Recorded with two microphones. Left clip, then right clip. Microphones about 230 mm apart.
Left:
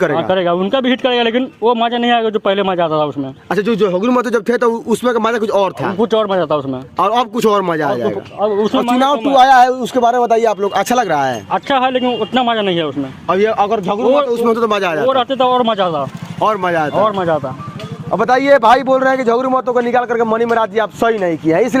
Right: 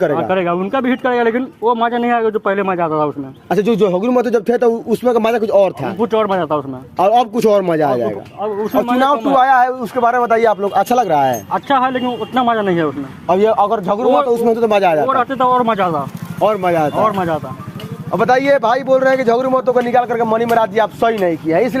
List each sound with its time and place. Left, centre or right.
0.2 s a man's voice: left
3.5 s a man's voice: centre
4.1 s speech: centre
6.0 s a man's voice: left
6.9 s speech: centre
8.4 s a man's voice: left
11.1 s a man's voice: centre
11.5 s a man's voice: left
13.2 s a man's voice: centre
15.0 s a man's voice: left
16.4 s speech: centre
17.0 s a man's voice: left